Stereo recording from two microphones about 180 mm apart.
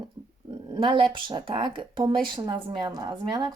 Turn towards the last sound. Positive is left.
turn(degrees=-25)  # may be behind; listen again after turning